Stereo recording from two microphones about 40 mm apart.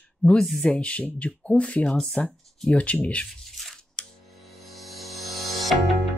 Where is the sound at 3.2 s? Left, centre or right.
Centre.